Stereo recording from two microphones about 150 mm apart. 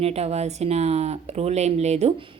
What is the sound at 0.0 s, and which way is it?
Speech, 45° right (ahead or behind).